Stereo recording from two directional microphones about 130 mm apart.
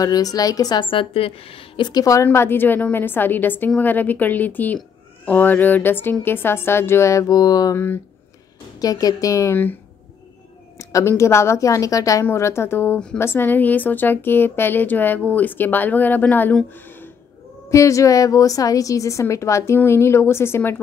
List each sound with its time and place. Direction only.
0.0 s a woman's voice: 30° left (ahead or behind)
2.2 s a woman's voice: 15° left (ahead or behind)
10.8 s a woman's voice: 25° left (ahead or behind)
16.7 s a sound: 15° left (ahead or behind)
17.6 s a woman's voice: 25° left (ahead or behind)